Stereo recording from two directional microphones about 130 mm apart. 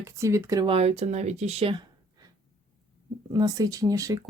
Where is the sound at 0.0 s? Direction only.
20° right (ahead or behind).